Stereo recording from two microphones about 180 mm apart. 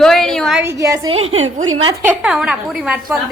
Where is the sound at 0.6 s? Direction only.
15° right (ahead or behind).